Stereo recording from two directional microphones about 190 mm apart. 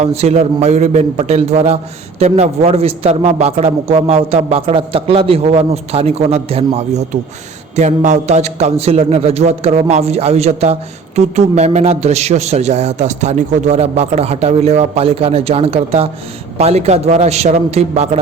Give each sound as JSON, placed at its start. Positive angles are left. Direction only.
{"t": 0.0, "sound": "a man's voice", "side_deg": -35}